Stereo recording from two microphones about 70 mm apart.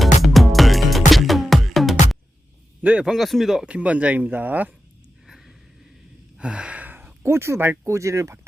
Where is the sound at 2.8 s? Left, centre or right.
Right.